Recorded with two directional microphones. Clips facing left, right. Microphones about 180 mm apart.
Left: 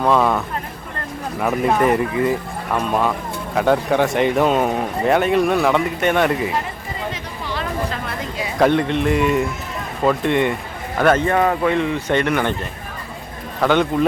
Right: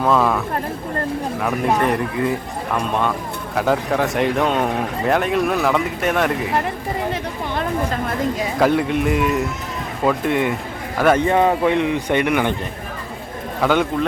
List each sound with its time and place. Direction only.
0.0 s speech: centre (ahead or behind)
7.1 s chatter: 50° right (ahead or behind)
8.5 s speech: 5° right (ahead or behind)
11.2 s speech: 20° right (ahead or behind)
13.6 s speech: 5° right (ahead or behind)